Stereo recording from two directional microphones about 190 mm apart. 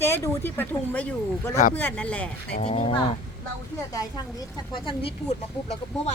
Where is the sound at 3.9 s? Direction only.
20° left (ahead or behind).